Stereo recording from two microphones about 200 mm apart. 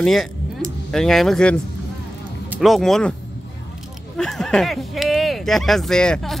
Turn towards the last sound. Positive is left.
turn(degrees=5)  # may be behind; listen again after turning